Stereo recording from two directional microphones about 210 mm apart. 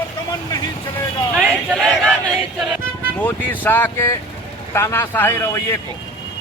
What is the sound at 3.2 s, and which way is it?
Speech, 10° left (ahead or behind).